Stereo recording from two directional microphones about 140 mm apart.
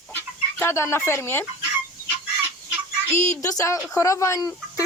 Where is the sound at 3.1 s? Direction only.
20° left (ahead or behind).